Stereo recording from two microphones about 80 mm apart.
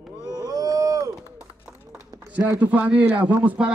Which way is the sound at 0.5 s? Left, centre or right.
Right.